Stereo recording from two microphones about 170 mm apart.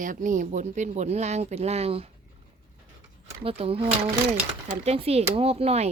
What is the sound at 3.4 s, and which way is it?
Speech, 35° right (ahead or behind).